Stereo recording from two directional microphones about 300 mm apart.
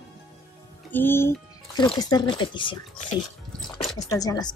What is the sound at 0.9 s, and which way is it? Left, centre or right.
Speech, centre.